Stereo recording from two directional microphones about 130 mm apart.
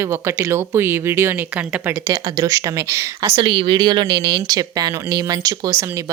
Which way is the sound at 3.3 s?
40° right (ahead or behind).